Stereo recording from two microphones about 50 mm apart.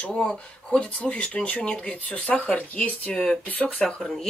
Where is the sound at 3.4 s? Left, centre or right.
Left.